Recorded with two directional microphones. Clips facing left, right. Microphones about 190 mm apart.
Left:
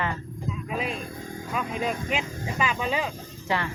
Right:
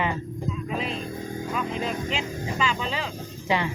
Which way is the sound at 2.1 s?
15° left (ahead or behind).